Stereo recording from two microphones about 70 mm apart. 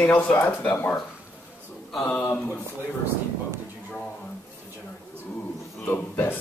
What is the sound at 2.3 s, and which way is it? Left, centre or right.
Speech, left.